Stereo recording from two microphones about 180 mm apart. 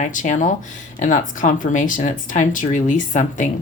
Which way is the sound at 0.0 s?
45° left (ahead or behind).